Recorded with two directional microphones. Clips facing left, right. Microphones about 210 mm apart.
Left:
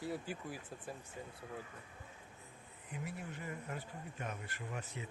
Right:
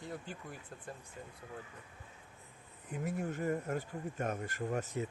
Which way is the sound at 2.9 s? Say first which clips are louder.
Right 8 dB; 45° right (ahead or behind).